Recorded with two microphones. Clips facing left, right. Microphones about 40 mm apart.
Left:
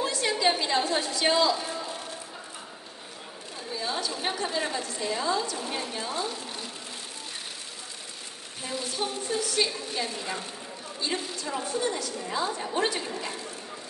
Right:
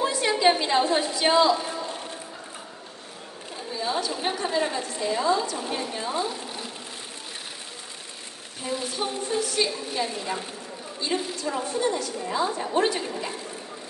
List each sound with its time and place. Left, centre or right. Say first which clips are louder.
0.0 s a sound: right 4 dB; centre
3.7 s a woman's voice: right 4 dB; centre
8.6 s a woman's voice: right 3 dB; centre